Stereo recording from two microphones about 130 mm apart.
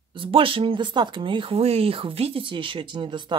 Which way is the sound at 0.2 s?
45° right (ahead or behind).